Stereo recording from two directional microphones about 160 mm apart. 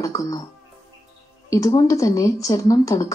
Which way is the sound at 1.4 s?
20° left (ahead or behind).